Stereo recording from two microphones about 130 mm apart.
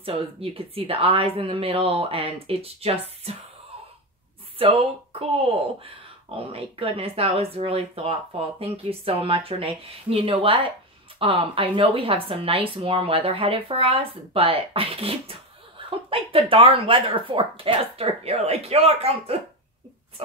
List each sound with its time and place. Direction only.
0.0 s speech: 45° right (ahead or behind)
4.6 s speech: 45° right (ahead or behind)
6.5 s speech: 50° right (ahead or behind)